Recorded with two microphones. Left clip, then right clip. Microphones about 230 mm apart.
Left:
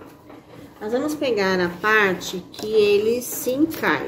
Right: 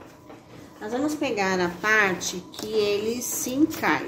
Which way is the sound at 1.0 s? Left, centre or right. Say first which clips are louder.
Left 3 dB; centre.